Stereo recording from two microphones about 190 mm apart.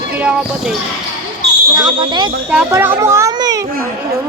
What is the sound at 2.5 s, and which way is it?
A child's voice, 5° right (ahead or behind).